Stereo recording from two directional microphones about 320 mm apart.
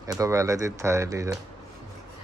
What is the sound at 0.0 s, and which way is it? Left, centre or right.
Speech, centre.